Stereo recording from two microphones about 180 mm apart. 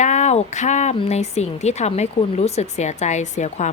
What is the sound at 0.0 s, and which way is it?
Speech, 40° left (ahead or behind).